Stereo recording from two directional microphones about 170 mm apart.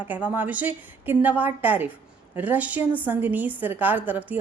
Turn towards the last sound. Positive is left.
turn(degrees=-10)  # may be behind; listen again after turning